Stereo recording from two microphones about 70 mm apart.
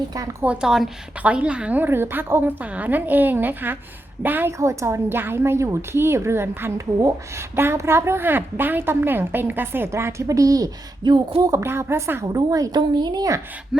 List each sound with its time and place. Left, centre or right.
0.4 s a woman's voice: centre
1.9 s a woman's voice: right
4.5 s speech: right
5.0 s a woman's voice: right
6.7 s speech: right
7.5 s a woman's voice: right
9.9 s speech: right
11.5 s a woman's voice: right
12.3 s speech: right
12.7 s a woman's voice: right